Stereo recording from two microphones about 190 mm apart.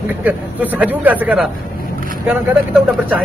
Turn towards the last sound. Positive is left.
turn(degrees=-10)  # may be behind; listen again after turning